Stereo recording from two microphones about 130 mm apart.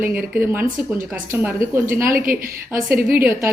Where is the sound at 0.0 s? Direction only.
15° right (ahead or behind).